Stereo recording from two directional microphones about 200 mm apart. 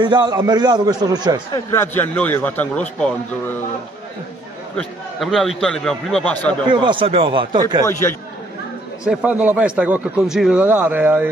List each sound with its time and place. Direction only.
0.0 s a man's voice: 20° right (ahead or behind)
1.5 s a man's voice: 10° left (ahead or behind)
4.7 s a man's voice: centre (ahead or behind)
6.7 s a man's voice: 25° right (ahead or behind)
7.8 s a man's voice: 15° left (ahead or behind)
9.0 s speech: 5° right (ahead or behind)